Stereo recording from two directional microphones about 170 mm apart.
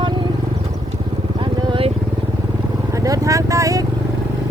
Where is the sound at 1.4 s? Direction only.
30° right (ahead or behind).